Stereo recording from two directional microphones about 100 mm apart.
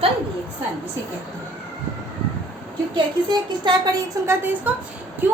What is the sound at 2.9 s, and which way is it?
Speech, 50° right (ahead or behind).